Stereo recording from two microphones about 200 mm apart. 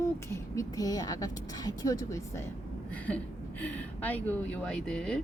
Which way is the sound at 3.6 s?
10° left (ahead or behind).